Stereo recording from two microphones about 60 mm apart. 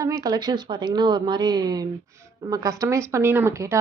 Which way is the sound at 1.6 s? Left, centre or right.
Right.